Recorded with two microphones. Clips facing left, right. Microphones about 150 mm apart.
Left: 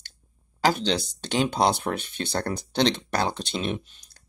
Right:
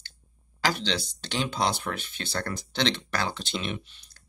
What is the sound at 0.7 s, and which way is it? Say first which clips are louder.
Speech: left 4 dB; 40° left (ahead or behind).